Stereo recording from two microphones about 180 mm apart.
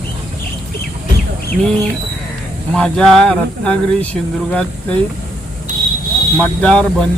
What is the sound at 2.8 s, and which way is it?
Speech, 5° left (ahead or behind).